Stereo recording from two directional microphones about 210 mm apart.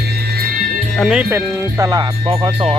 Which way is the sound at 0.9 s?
Centre (ahead or behind).